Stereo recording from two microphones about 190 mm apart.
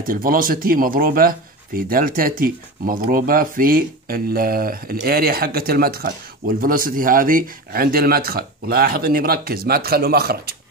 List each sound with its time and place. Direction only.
0.0 s speech: 45° right (ahead or behind)